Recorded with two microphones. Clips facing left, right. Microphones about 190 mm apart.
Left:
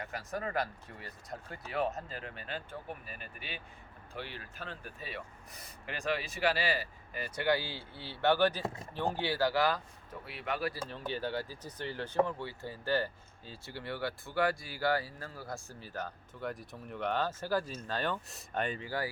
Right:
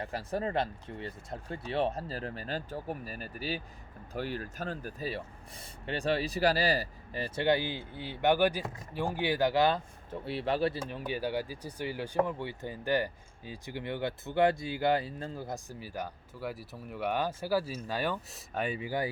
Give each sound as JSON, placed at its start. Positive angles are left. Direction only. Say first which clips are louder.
{"t": 0.0, "sound": "speech", "louder": "right 5 dB", "side_deg": -30}
{"t": 10.9, "sound": "speech", "louder": "right 3 dB", "side_deg": -10}